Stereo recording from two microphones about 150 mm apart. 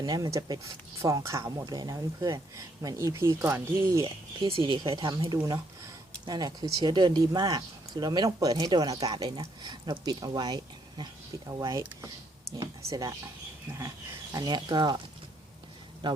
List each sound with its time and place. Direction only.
0.0 s speech: 25° right (ahead or behind)
4.0 s speech: 35° right (ahead or behind)
14.3 s speech: 30° right (ahead or behind)